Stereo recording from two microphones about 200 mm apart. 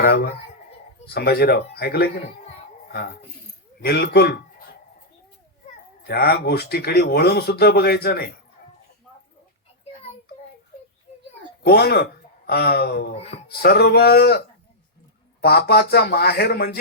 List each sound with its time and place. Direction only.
1.0 s speech: 50° left (ahead or behind)
3.8 s speech: 55° left (ahead or behind)
6.1 s speech: 50° left (ahead or behind)
11.6 s speech: 55° left (ahead or behind)